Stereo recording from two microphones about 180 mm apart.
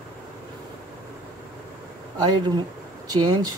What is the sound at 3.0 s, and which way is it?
Speech, 20° right (ahead or behind).